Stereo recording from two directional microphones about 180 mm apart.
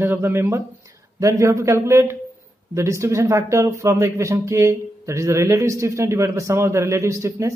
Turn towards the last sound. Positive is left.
turn(degrees=-15)  # may be behind; listen again after turning